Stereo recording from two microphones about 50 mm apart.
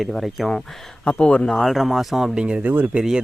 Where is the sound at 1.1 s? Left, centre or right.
Left.